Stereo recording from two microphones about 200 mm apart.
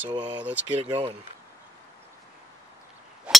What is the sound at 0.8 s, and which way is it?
Speech, 30° right (ahead or behind).